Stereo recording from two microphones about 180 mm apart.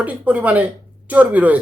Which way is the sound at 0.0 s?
10° right (ahead or behind).